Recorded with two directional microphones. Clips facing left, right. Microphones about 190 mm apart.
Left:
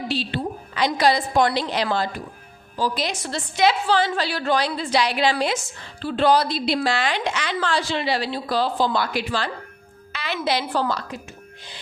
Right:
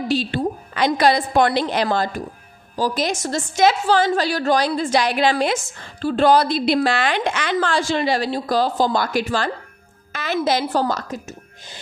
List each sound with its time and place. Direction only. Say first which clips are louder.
0.1 s a woman's voice: right 6 dB; 45° right (ahead or behind)